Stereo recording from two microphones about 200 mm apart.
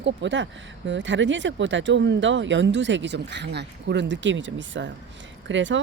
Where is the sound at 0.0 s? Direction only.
60° right (ahead or behind).